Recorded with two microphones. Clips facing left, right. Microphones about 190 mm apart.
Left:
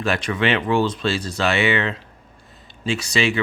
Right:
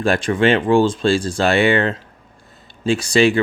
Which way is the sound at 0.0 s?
50° right (ahead or behind).